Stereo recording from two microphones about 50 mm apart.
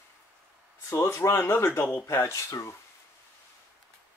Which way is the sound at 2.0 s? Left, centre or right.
Left.